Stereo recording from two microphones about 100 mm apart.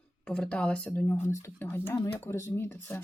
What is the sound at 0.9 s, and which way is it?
Speech, 25° left (ahead or behind).